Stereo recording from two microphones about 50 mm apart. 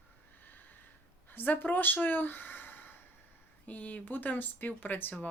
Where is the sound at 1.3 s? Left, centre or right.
Left.